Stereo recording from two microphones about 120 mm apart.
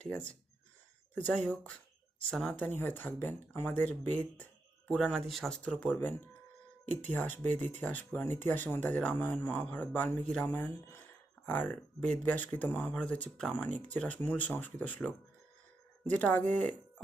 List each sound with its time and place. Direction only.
0.1 s speech: 10° left (ahead or behind)